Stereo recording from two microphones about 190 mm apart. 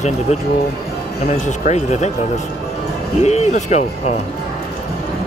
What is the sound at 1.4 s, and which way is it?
Speech, 35° left (ahead or behind).